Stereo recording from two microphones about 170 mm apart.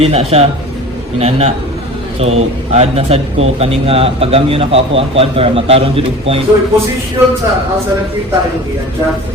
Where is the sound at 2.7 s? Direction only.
35° right (ahead or behind).